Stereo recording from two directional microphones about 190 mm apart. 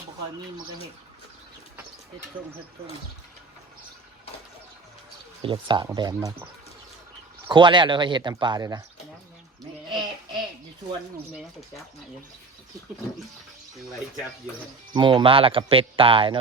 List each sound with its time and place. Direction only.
5.4 s speech: 25° right (ahead or behind)
7.4 s speech: 25° right (ahead or behind)
14.9 s speech: 25° right (ahead or behind)